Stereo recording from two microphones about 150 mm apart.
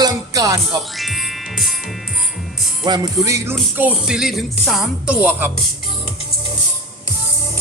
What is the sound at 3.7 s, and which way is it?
Music, 10° right (ahead or behind).